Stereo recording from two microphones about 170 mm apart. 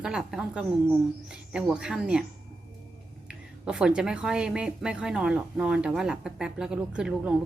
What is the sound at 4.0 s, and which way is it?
Speech, 5° right (ahead or behind).